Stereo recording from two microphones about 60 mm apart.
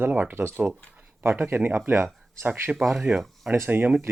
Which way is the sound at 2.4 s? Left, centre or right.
Right.